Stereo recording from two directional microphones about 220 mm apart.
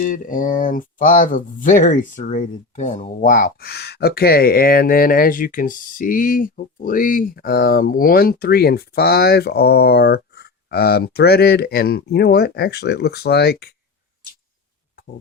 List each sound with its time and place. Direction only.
0.0 s speech: 40° left (ahead or behind)